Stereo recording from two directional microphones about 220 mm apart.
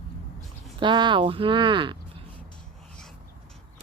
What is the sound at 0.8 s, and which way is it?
Speech, 20° right (ahead or behind).